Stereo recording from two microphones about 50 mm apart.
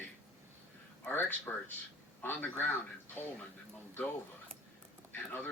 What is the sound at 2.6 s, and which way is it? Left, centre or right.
Speech, left.